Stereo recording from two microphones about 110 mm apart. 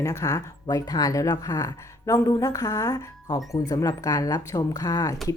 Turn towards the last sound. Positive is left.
turn(degrees=35)  # may be behind; listen again after turning